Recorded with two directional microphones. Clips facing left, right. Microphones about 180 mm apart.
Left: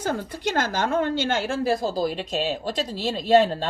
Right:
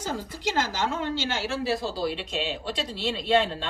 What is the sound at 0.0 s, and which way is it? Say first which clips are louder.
A woman's voice: left 4 dB; 60° left (ahead or behind).